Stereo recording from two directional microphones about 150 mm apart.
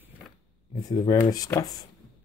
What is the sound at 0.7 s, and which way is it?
Speech, 30° left (ahead or behind).